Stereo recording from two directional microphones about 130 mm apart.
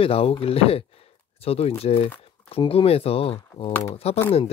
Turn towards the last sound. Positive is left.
turn(degrees=50)  # may be behind; listen again after turning